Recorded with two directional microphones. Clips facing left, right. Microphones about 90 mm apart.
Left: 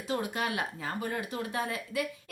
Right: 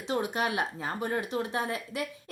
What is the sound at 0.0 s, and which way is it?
Speech, 25° right (ahead or behind).